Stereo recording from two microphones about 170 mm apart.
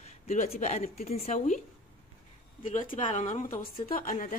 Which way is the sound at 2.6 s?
50° left (ahead or behind).